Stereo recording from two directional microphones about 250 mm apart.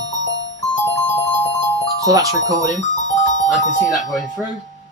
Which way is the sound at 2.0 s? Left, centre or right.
Centre.